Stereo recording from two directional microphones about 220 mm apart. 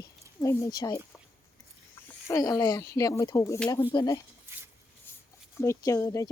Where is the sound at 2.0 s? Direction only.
15° left (ahead or behind).